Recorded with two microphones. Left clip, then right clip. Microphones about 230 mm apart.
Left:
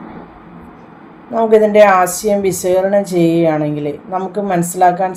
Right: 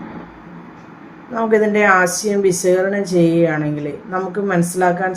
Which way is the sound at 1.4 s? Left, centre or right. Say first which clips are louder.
Left 6 dB; centre.